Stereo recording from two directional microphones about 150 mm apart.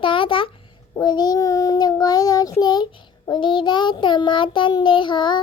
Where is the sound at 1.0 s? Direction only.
25° left (ahead or behind).